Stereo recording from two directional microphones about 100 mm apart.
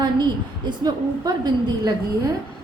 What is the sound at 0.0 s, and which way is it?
A woman's voice, 45° right (ahead or behind).